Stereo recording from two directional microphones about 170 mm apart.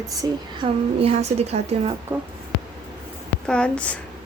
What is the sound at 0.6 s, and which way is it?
A woman's voice, 35° right (ahead or behind).